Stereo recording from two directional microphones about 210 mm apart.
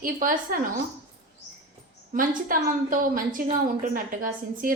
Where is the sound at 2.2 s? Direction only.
40° right (ahead or behind).